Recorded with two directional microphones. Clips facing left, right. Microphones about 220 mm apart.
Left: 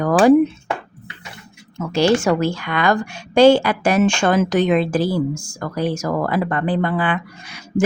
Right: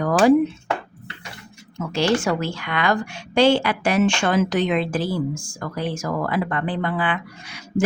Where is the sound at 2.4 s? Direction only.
45° left (ahead or behind).